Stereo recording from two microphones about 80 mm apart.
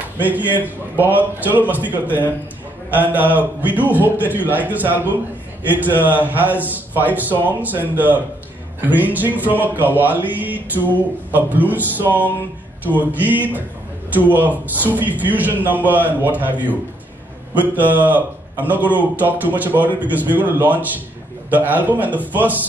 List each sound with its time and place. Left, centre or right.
0.6 s a man's voice: right
12.8 s a man's voice: right